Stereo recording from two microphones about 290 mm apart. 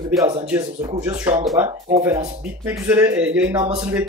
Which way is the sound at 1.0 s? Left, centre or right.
Centre.